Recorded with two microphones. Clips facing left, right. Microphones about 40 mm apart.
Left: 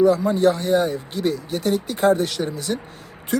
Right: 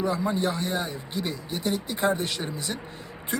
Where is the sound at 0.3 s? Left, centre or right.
Centre.